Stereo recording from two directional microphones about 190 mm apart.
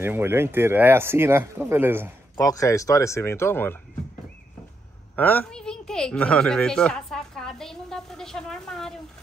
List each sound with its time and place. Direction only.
0.0 s speech: 10° right (ahead or behind)
2.3 s speech: 20° left (ahead or behind)
5.1 s speech: 10° left (ahead or behind)